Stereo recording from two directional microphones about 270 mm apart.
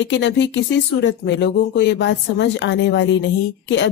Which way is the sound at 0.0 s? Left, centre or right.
Left.